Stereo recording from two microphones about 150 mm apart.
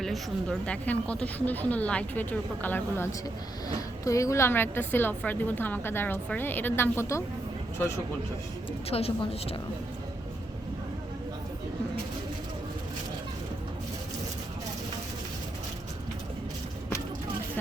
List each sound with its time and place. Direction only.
0.0 s a woman's voice: 5° left (ahead or behind)
8.9 s a woman's voice: 40° left (ahead or behind)